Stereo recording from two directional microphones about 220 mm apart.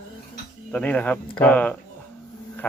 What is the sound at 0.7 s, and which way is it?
Speech, 5° left (ahead or behind).